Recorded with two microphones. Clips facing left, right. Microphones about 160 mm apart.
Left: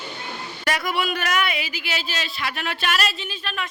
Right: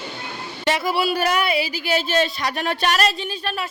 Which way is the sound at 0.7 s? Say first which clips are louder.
Right 4 dB; 25° right (ahead or behind).